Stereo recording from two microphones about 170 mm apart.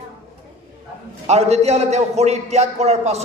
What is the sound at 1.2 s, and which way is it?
A man's voice, 40° right (ahead or behind).